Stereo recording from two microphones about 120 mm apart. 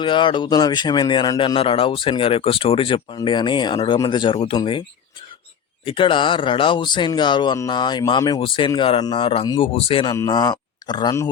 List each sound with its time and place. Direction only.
0.0 s speech: 40° left (ahead or behind)
5.8 s speech: 45° left (ahead or behind)
10.1 s speech: 35° left (ahead or behind)